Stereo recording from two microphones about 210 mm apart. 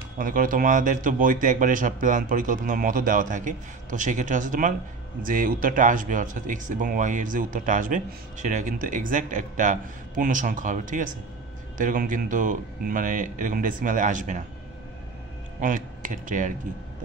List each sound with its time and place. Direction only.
0.2 s speech: 40° right (ahead or behind)
15.6 s speech: 40° right (ahead or behind)